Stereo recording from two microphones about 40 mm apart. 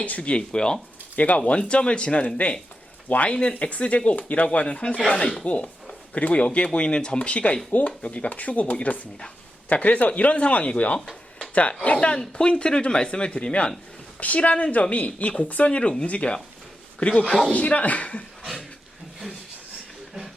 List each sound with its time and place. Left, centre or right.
0.0 s speech: left
1.1 s speech: left
1.5 s a woman's voice: left
4.5 s speech: left
5.5 s a woman's voice: left